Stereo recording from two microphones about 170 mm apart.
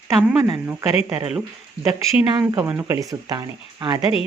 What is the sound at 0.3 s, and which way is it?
Speech, 20° right (ahead or behind).